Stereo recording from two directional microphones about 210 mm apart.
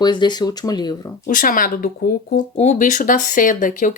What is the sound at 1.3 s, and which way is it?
Speech, 40° left (ahead or behind).